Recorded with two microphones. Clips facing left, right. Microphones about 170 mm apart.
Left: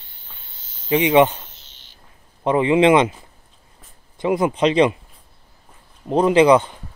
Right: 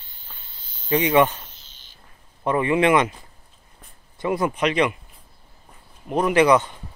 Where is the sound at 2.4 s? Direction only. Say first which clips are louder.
Left 4 dB; 20° left (ahead or behind).